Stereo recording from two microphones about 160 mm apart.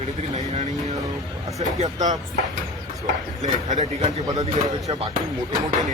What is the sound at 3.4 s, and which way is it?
Speech, 50° right (ahead or behind).